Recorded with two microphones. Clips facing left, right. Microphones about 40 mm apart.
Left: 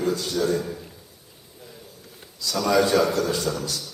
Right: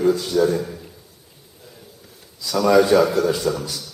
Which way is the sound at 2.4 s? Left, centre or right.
Centre.